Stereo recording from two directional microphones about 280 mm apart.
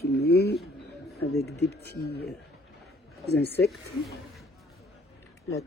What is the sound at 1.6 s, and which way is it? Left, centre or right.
Speech, left.